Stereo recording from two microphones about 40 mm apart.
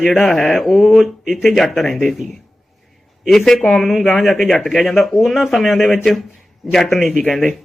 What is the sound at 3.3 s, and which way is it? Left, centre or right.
A man's voice, centre.